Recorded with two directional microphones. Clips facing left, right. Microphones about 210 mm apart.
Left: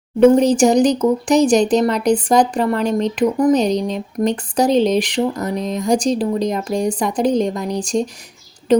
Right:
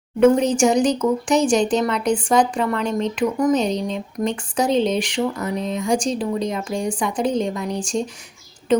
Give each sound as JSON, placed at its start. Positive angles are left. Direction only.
{"t": 0.2, "sound": "speech", "side_deg": 35}